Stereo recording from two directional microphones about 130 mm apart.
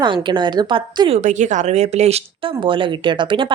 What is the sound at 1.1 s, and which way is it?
Speech, 65° right (ahead or behind).